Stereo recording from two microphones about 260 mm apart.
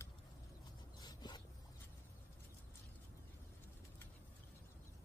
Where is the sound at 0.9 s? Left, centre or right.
Centre.